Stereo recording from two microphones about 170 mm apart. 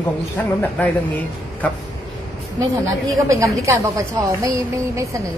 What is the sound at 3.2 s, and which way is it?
A woman's voice, 20° right (ahead or behind).